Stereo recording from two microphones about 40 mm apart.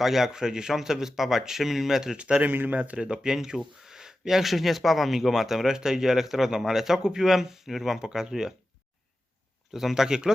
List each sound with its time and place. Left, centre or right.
0.0 s speech: centre
2.1 s speech: right
2.4 s speech: right
3.0 s speech: right
3.3 s speech: centre
9.7 s speech: centre